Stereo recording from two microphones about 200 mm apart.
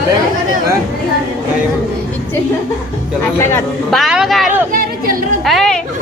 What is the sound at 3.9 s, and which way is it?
Speech, centre (ahead or behind).